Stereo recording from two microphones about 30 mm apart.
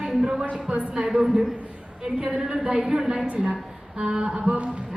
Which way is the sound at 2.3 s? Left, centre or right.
Centre.